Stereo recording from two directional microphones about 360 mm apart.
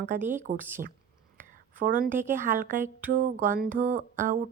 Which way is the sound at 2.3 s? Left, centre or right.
Right.